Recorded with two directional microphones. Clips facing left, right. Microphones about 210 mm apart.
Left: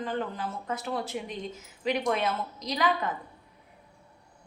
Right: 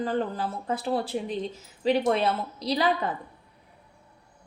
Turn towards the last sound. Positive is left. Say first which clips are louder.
# right 3 dB
turn(degrees=-35)  # may be behind; listen again after turning